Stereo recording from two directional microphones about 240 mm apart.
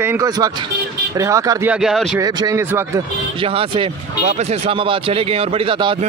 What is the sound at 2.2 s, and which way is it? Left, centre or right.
A man's voice, centre.